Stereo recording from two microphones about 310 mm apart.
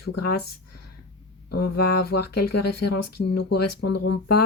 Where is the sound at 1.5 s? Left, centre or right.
Left.